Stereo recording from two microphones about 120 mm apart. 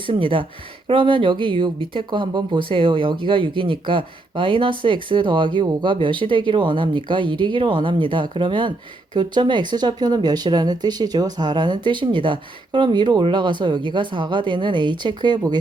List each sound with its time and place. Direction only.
0.0 s speech: 45° right (ahead or behind)